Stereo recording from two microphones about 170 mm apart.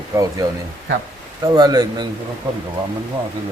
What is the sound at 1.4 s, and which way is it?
Speech, 25° right (ahead or behind).